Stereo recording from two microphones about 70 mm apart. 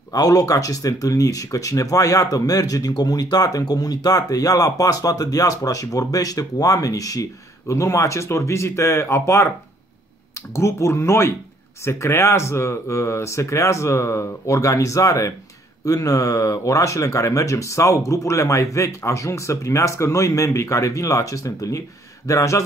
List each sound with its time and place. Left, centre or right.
0.1 s speech: left
10.5 s speech: left